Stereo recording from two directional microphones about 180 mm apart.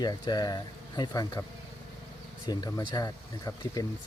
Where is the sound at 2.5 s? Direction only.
20° left (ahead or behind).